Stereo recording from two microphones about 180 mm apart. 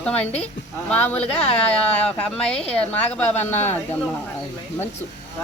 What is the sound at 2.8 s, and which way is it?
Speech, 10° left (ahead or behind).